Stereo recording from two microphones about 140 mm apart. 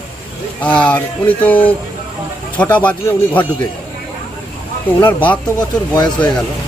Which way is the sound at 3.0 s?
15° left (ahead or behind).